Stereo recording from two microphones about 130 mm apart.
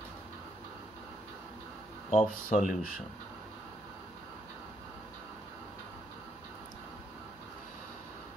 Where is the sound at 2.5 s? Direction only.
65° left (ahead or behind).